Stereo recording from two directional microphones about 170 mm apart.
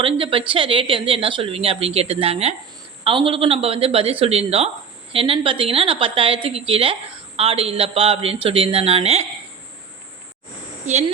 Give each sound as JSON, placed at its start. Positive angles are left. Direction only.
{"t": 0.0, "sound": "speech", "side_deg": -30}
{"t": 10.9, "sound": "speech", "side_deg": -40}